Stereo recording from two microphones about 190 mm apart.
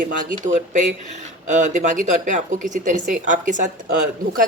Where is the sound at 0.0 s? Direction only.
40° right (ahead or behind).